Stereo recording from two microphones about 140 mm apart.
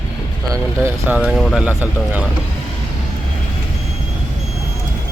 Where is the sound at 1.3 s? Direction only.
Centre (ahead or behind).